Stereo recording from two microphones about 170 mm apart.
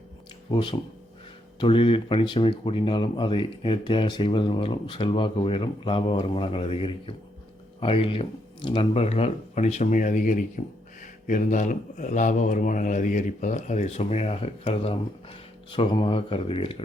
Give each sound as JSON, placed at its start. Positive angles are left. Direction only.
{"t": 0.5, "sound": "speech", "side_deg": 30}